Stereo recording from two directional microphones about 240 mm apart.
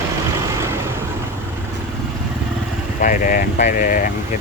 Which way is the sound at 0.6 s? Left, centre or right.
Centre.